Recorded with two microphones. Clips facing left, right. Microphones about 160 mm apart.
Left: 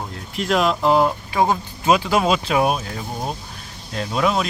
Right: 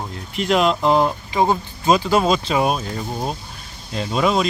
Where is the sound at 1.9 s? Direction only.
10° left (ahead or behind).